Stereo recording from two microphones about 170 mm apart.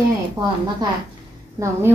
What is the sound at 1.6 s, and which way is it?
Speech, 20° right (ahead or behind).